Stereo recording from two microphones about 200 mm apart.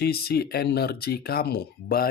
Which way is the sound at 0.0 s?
50° left (ahead or behind).